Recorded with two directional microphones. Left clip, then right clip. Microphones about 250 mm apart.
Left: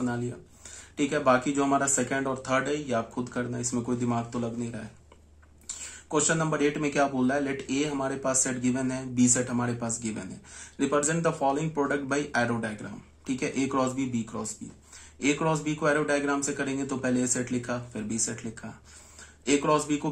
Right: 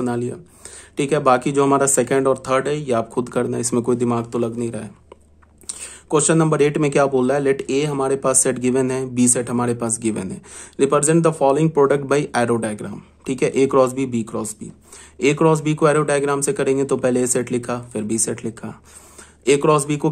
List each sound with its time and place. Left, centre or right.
0.9 s speech: right
6.0 s speech: right